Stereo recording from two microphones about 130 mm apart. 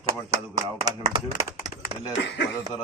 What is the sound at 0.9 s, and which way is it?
Speech, 30° right (ahead or behind).